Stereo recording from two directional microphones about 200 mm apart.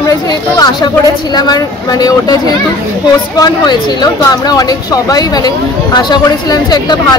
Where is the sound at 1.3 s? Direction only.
20° left (ahead or behind).